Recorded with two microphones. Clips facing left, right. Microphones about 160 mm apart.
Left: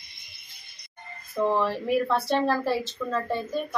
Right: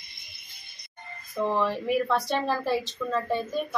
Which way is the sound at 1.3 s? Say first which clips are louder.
Left 2 dB; 5° left (ahead or behind).